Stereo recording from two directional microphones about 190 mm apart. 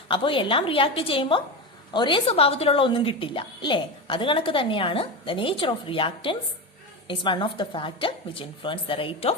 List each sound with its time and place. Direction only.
0.1 s a woman's voice: 25° left (ahead or behind)